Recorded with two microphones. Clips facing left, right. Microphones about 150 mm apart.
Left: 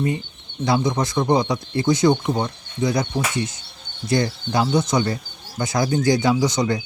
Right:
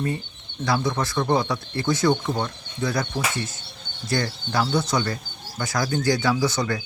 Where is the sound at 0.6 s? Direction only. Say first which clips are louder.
Left 4 dB; 20° left (ahead or behind).